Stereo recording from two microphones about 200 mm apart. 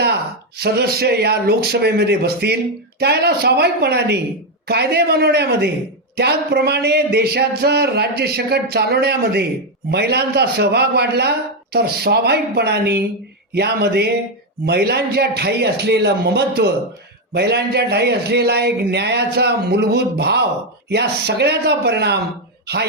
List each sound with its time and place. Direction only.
0.0 s a man's voice: 55° right (ahead or behind)